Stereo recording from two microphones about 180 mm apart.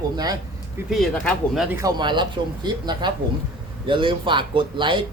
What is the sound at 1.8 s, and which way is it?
Speech, 20° right (ahead or behind).